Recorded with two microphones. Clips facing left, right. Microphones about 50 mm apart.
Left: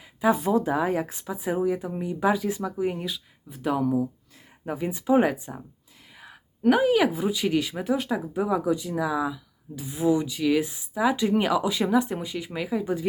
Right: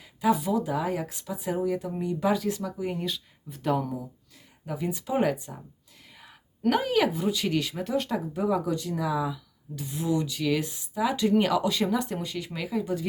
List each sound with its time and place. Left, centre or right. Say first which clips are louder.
0.3 s speech: left 3 dB; left; by 3.0 s centre
3.0 s speech: even; centre
4.6 s speech: left 3 dB; left